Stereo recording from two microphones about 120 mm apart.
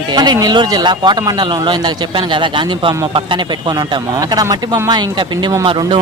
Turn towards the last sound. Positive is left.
turn(degrees=-40)  # may be behind; listen again after turning